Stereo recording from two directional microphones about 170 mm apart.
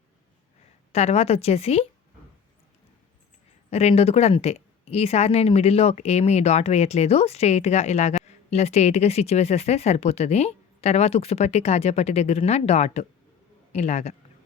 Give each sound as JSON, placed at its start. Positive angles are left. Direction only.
{"t": 0.9, "sound": "a woman's voice", "side_deg": 40}
{"t": 3.7, "sound": "a woman's voice", "side_deg": 40}